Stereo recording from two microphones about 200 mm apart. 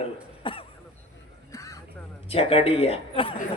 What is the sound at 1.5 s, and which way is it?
Crow, 15° left (ahead or behind).